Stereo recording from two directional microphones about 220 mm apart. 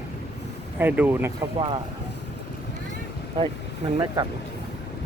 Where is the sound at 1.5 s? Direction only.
25° right (ahead or behind).